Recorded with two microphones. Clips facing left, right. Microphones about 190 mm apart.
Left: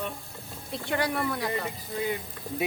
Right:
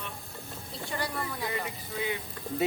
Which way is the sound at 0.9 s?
65° left (ahead or behind).